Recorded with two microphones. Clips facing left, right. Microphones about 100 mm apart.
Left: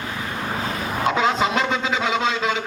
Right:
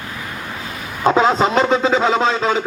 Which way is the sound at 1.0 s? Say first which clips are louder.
Right 6 dB; 35° right (ahead or behind).